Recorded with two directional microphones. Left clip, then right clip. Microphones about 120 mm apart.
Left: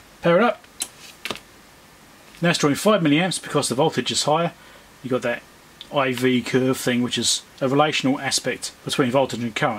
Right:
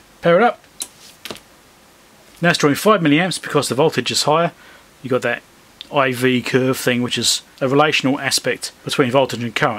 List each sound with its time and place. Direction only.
0.2 s speech: 25° right (ahead or behind)
0.7 s a sound: 10° right (ahead or behind)
2.4 s speech: 30° right (ahead or behind)